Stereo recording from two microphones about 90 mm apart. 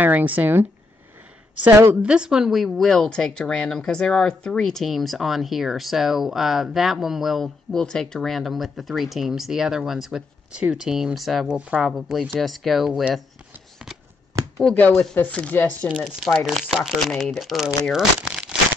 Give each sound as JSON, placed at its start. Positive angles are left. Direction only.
{"t": 0.0, "sound": "speech", "side_deg": -20}
{"t": 2.0, "sound": "speech", "side_deg": -10}
{"t": 14.6, "sound": "speech", "side_deg": 15}
{"t": 16.0, "sound": "speech", "side_deg": 0}